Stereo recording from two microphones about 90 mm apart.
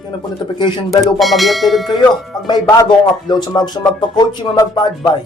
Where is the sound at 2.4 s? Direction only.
50° left (ahead or behind).